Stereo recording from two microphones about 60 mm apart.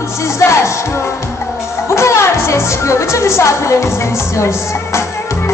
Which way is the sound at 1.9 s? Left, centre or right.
Left.